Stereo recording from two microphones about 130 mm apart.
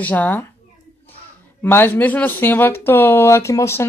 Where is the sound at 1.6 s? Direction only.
15° left (ahead or behind).